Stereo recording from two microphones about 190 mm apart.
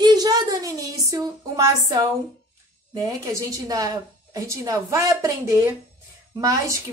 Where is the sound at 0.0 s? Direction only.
20° right (ahead or behind).